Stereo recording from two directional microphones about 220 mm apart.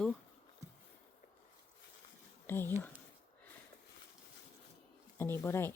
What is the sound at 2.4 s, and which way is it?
Speech, 10° left (ahead or behind).